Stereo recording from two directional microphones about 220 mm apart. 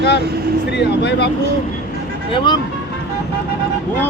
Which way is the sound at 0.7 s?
50° left (ahead or behind).